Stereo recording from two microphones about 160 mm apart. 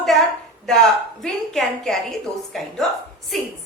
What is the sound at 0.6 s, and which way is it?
A woman's voice, 5° left (ahead or behind).